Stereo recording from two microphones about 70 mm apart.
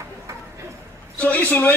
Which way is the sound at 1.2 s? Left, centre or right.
Left.